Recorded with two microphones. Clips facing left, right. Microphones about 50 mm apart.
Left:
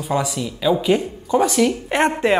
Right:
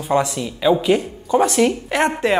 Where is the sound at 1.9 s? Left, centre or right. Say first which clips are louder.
Left 2 dB; left.